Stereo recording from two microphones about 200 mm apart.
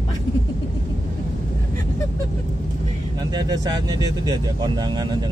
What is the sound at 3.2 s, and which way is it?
Speech, 20° right (ahead or behind).